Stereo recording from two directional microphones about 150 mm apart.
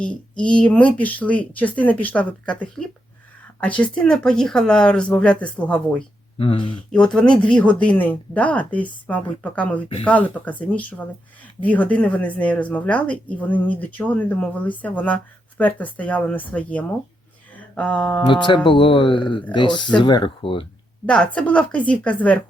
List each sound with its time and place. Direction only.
0.0 s speech: 5° left (ahead or behind)
6.4 s speech: 35° left (ahead or behind)
6.9 s speech: 5° left (ahead or behind)
18.3 s speech: 30° left (ahead or behind)
21.1 s speech: 5° left (ahead or behind)